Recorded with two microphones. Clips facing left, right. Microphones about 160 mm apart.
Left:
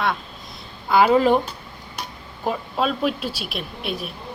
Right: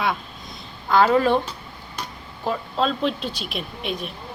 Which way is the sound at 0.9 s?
15° left (ahead or behind).